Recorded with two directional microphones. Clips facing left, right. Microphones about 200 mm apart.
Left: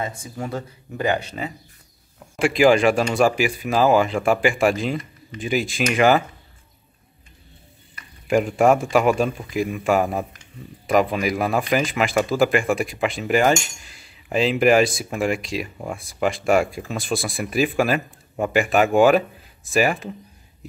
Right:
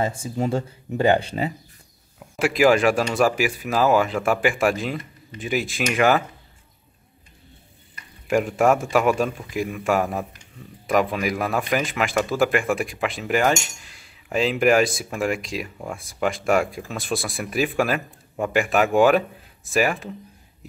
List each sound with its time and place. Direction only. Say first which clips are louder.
0.0 s speech: right 5 dB; 30° right (ahead or behind)
2.1 s speech: left 2 dB; 5° right (ahead or behind)
8.3 s speech: left 2 dB; centre (ahead or behind)